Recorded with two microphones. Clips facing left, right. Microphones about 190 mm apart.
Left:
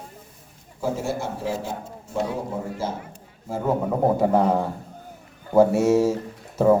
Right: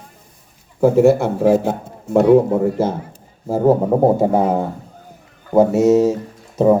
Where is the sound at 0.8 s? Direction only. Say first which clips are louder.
Right 14 dB; 60° right (ahead or behind).